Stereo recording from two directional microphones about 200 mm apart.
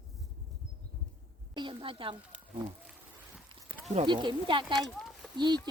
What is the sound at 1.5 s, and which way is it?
Speech, 25° right (ahead or behind).